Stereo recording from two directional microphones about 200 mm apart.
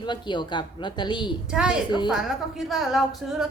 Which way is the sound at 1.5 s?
5° right (ahead or behind).